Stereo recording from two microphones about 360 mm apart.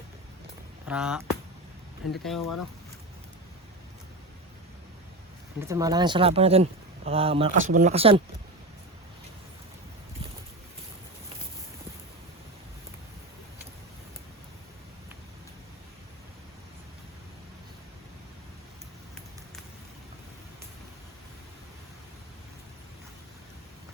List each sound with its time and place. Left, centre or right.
0.9 s speech: centre
2.2 s speech: centre
5.5 s speech: centre